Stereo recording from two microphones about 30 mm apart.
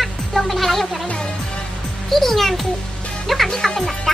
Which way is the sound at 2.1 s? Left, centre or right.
Centre.